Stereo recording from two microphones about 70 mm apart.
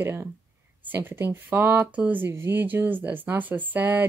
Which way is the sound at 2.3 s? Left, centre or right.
Right.